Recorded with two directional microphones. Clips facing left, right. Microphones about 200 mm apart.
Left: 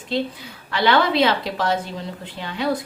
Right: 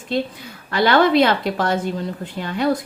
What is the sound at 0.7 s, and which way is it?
Speech, 45° right (ahead or behind).